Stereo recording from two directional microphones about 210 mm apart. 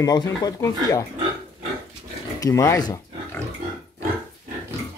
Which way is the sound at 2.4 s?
15° left (ahead or behind).